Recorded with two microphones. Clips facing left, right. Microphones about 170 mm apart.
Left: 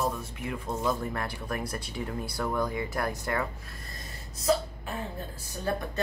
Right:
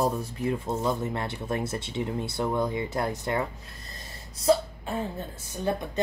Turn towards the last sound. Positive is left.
turn(degrees=-20)  # may be behind; listen again after turning